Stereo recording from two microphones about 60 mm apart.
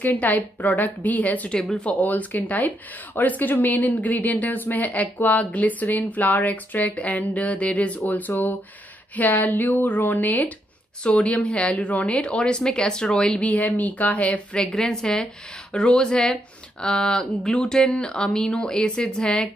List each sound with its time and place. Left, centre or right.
0.0 s speech: left
13.5 s speech: left